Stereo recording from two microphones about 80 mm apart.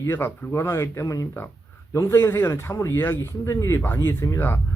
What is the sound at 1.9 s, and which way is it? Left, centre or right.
Speech, left.